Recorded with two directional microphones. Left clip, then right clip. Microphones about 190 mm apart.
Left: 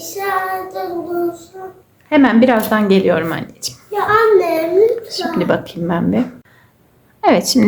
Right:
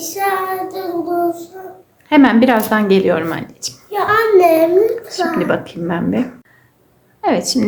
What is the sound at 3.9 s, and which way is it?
Speech, 50° right (ahead or behind).